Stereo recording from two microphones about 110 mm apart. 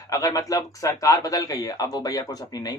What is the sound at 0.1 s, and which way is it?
A man's voice, 35° left (ahead or behind).